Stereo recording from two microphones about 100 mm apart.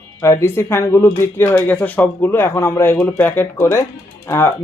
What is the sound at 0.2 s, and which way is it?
Speech, 30° left (ahead or behind).